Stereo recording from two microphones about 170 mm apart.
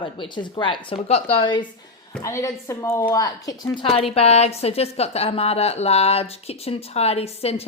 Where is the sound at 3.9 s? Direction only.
35° left (ahead or behind).